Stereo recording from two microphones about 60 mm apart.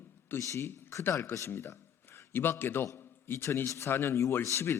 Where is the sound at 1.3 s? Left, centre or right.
Left.